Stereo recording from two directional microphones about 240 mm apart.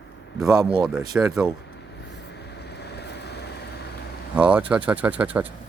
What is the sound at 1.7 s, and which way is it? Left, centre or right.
Vehicle, left.